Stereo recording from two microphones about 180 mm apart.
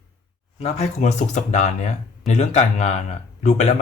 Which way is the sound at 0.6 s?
40° left (ahead or behind).